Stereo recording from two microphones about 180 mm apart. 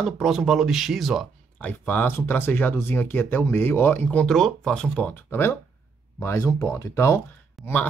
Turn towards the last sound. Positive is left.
turn(degrees=10)  # may be behind; listen again after turning